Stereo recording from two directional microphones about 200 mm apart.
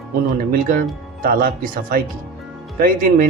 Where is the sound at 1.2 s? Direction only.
45° right (ahead or behind).